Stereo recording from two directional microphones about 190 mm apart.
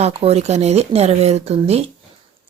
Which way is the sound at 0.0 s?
30° right (ahead or behind).